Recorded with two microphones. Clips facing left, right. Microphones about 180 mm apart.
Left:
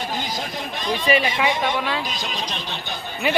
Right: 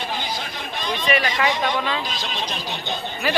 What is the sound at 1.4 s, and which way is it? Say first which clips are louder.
A man's voice: even; 5° left (ahead or behind).